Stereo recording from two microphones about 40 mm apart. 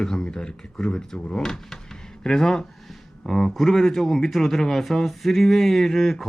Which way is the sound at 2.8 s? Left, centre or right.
Centre.